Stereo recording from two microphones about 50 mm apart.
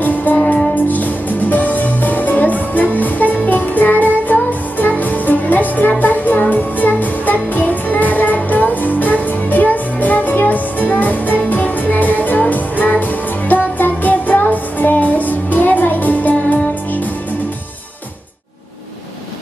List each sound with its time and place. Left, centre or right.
0.0 s music: left